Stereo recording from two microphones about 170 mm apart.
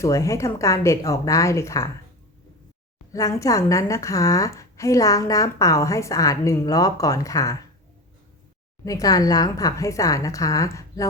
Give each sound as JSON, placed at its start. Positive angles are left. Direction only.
{"t": 0.0, "sound": "speech", "side_deg": 20}
{"t": 3.1, "sound": "a woman's voice", "side_deg": 20}
{"t": 8.8, "sound": "a woman's voice", "side_deg": 20}